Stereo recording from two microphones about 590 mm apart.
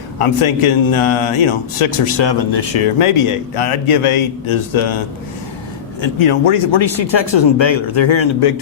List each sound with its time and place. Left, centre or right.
0.2 s speech: left
6.0 s speech: left